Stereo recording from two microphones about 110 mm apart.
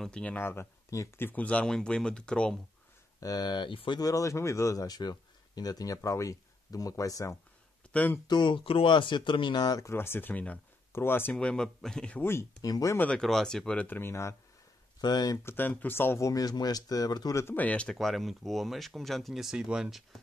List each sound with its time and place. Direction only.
0.0 s speech: 10° left (ahead or behind)
3.2 s speech: 35° left (ahead or behind)
4.0 s speech: 30° left (ahead or behind)
7.9 s speech: 15° left (ahead or behind)
8.3 s speech: 45° left (ahead or behind)
9.8 s speech: 20° left (ahead or behind)
11.3 s speech: 5° left (ahead or behind)
12.6 s speech: 35° left (ahead or behind)
12.9 s speech: 15° left (ahead or behind)
13.2 s speech: 5° left (ahead or behind); by 14.3 s 25° left (ahead or behind)
15.0 s speech: 40° left (ahead or behind)
15.4 s speech: 20° left (ahead or behind); by 17.4 s 35° left (ahead or behind)
17.4 s speech: 20° left (ahead or behind)
17.9 s speech: centre (ahead or behind)